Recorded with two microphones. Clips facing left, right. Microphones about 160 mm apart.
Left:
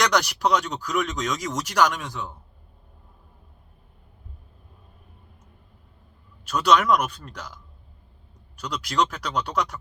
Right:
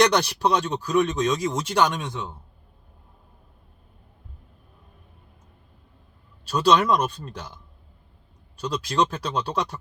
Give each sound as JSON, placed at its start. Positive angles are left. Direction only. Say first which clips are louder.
{"t": 0.0, "sound": "speech", "louder": "right 3 dB", "side_deg": -25}
{"t": 6.4, "sound": "speech", "louder": "right 1 dB", "side_deg": -30}